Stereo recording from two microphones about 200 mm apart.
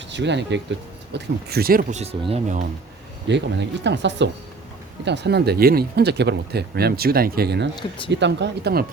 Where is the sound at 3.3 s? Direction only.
60° right (ahead or behind).